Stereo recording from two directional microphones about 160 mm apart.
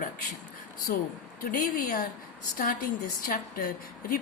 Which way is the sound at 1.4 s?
60° left (ahead or behind).